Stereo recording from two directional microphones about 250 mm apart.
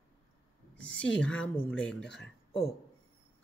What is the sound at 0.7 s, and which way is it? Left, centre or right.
A woman's voice, centre.